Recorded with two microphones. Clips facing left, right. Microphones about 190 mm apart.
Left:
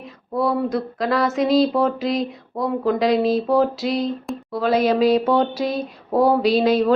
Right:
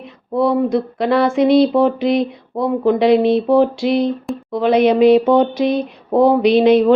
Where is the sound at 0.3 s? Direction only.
25° right (ahead or behind).